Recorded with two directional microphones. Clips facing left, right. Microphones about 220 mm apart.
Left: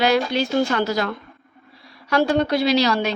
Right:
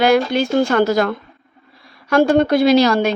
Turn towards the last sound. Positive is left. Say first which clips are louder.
# right 6 dB
turn(degrees=-50)  # may be behind; listen again after turning